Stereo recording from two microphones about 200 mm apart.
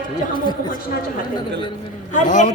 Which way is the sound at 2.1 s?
40° left (ahead or behind).